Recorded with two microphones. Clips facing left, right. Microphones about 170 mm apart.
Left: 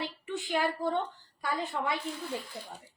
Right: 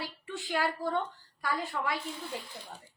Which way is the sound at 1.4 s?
20° left (ahead or behind).